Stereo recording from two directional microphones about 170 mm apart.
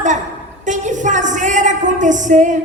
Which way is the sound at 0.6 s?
45° right (ahead or behind).